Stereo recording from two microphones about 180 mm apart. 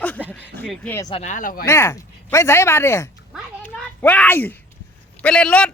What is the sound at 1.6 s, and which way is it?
A man's voice, 15° left (ahead or behind).